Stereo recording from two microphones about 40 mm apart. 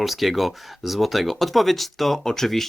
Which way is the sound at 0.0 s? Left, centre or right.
Centre.